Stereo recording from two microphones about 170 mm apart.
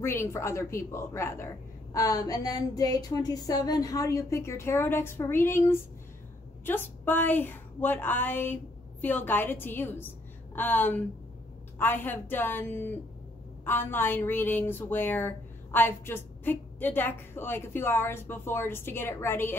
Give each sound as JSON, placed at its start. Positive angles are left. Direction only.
{"t": 0.0, "sound": "a woman's voice", "side_deg": 15}
{"t": 2.0, "sound": "a sound", "side_deg": 20}
{"t": 6.6, "sound": "a woman's voice", "side_deg": 10}